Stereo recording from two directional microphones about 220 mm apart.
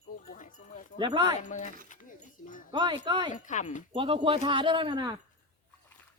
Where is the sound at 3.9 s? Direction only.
25° right (ahead or behind).